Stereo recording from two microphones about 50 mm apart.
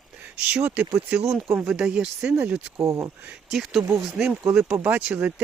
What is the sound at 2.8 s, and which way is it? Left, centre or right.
Speech, right.